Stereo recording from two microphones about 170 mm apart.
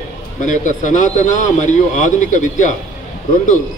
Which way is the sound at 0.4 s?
50° left (ahead or behind).